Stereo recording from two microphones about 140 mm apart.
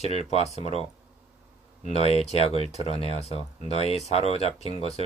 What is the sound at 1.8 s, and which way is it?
Speech, 50° left (ahead or behind).